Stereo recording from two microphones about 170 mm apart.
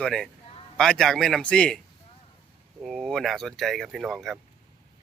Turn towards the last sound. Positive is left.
turn(degrees=0)  # may be behind; listen again after turning